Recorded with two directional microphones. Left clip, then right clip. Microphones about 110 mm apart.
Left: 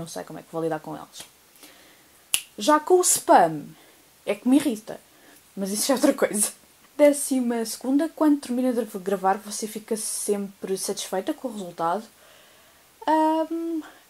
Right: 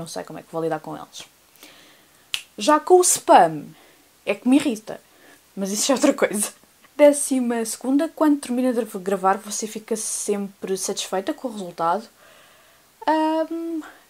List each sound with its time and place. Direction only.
0.0 s speech: 20° right (ahead or behind)
13.0 s speech: 10° right (ahead or behind)